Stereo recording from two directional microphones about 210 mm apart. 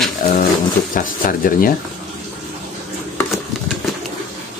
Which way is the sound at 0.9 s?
40° left (ahead or behind).